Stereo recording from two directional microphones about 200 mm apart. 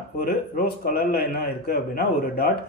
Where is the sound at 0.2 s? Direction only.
50° left (ahead or behind).